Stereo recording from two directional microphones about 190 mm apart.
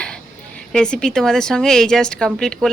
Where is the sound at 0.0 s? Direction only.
5° left (ahead or behind).